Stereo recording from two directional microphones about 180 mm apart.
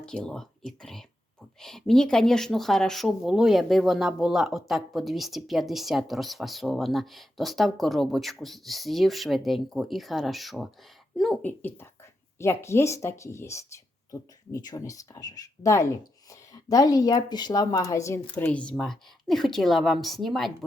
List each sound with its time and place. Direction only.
0.0 s speech: 5° left (ahead or behind)